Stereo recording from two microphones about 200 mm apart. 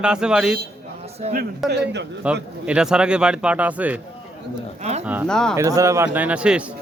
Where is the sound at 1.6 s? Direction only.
55° right (ahead or behind).